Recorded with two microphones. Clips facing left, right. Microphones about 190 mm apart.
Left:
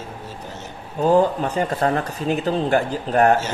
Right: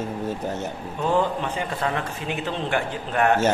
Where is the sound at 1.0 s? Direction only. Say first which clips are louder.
Left 6 dB; 40° left (ahead or behind).